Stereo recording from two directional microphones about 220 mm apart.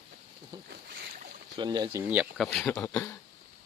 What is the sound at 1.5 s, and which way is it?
Speech, 20° right (ahead or behind).